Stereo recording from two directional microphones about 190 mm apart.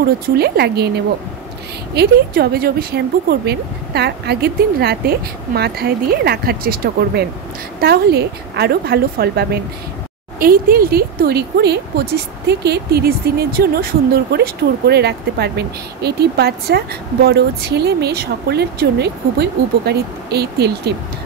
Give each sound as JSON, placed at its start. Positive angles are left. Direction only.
{"t": 0.4, "sound": "a woman's voice", "side_deg": -60}